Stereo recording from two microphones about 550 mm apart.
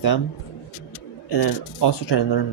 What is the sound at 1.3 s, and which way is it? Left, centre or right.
Speech, left.